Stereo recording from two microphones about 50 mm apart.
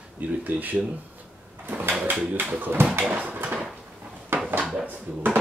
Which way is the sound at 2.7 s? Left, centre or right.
Right.